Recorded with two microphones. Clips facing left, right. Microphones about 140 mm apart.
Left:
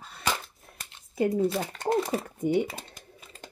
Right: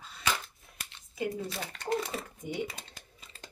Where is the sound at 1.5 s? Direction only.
45° left (ahead or behind).